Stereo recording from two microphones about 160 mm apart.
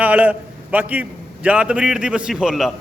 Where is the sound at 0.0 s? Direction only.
10° right (ahead or behind).